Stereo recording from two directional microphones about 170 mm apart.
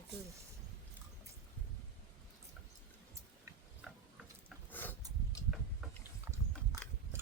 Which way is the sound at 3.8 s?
5° right (ahead or behind).